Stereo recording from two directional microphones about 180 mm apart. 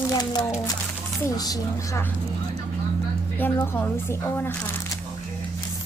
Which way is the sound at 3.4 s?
10° left (ahead or behind).